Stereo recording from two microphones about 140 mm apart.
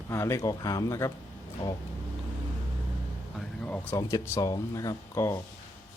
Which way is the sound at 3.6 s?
10° left (ahead or behind).